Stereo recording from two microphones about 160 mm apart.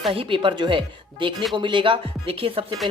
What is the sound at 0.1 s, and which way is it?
Speech, 35° right (ahead or behind).